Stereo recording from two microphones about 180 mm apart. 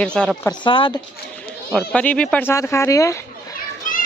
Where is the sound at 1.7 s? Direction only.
5° left (ahead or behind).